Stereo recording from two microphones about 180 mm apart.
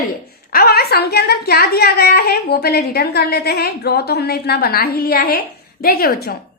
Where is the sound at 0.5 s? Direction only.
60° left (ahead or behind).